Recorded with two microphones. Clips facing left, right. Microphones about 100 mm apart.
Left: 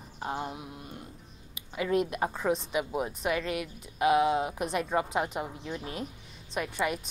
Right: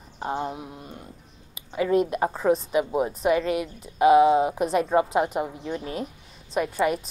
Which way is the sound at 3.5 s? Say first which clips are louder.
Right 7 dB; 35° right (ahead or behind).